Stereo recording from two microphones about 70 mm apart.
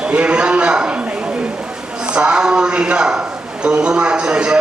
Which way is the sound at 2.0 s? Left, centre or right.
Centre.